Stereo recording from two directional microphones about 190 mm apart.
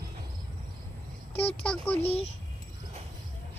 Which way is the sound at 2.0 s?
30° left (ahead or behind).